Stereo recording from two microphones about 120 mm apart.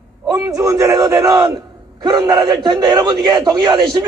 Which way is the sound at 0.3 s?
30° right (ahead or behind).